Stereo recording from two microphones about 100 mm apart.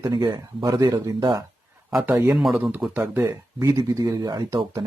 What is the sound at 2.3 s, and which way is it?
Speech, 5° right (ahead or behind).